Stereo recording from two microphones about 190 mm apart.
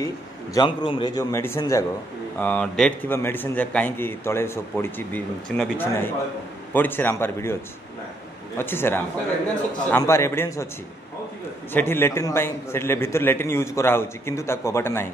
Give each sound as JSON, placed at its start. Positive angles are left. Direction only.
{"t": 0.0, "sound": "a man's voice", "side_deg": 20}
{"t": 8.5, "sound": "a man's voice", "side_deg": 10}
{"t": 11.7, "sound": "a man's voice", "side_deg": 10}